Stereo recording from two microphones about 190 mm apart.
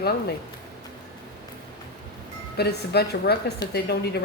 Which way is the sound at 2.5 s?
55° left (ahead or behind).